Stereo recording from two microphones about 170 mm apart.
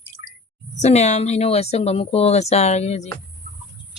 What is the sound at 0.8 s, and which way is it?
Speech, 40° left (ahead or behind).